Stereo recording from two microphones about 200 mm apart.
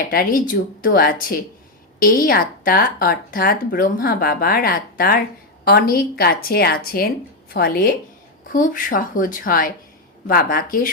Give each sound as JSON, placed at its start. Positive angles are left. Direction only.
{"t": 0.1, "sound": "speech", "side_deg": 45}